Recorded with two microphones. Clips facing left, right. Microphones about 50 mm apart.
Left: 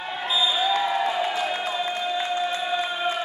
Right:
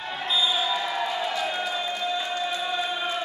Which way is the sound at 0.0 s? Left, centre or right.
Centre.